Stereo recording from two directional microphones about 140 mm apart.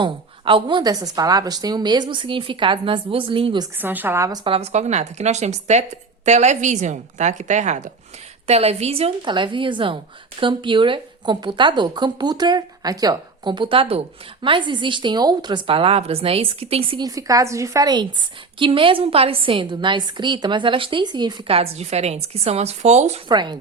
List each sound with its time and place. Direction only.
0.0 s a woman's voice: 35° right (ahead or behind)
3.8 s a woman's voice: 15° right (ahead or behind)
4.4 s a woman's voice: 45° right (ahead or behind)
17.0 s a woman's voice: 25° right (ahead or behind); by 23.2 s 50° right (ahead or behind)
23.3 s a woman's voice: 30° right (ahead or behind)